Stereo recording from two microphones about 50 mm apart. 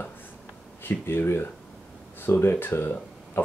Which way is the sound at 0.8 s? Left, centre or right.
Left.